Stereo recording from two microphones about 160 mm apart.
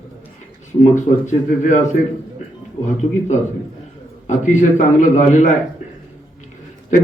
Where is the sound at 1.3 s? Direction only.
50° left (ahead or behind).